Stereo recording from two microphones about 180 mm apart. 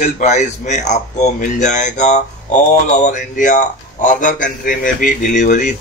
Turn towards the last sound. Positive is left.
turn(degrees=45)  # may be behind; listen again after turning